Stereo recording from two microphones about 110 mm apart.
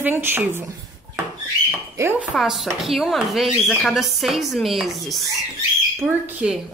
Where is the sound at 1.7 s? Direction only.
20° right (ahead or behind).